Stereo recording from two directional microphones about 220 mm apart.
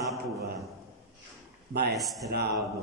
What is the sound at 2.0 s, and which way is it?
Speech, centre (ahead or behind).